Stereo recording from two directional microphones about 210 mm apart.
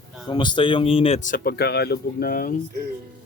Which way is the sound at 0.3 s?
20° left (ahead or behind).